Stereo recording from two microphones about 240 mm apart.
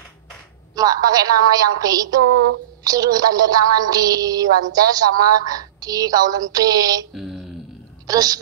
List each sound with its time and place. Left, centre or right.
0.7 s a woman's voice: centre
7.2 s a sound: centre
8.1 s a woman's voice: centre